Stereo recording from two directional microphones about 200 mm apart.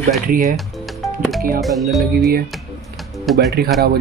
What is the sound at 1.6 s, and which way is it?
Speech, centre (ahead or behind).